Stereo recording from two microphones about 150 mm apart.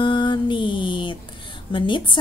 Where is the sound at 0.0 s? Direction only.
30° left (ahead or behind).